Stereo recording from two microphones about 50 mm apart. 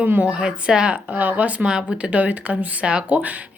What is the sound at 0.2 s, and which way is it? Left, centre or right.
Speech, centre.